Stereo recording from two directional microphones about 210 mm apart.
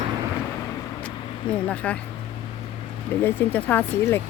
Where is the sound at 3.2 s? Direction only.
10° left (ahead or behind).